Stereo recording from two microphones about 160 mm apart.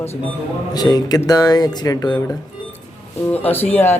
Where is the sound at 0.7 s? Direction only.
25° left (ahead or behind).